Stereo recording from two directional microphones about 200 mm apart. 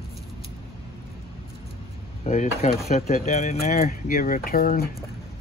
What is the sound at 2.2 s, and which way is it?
Speech, 35° left (ahead or behind).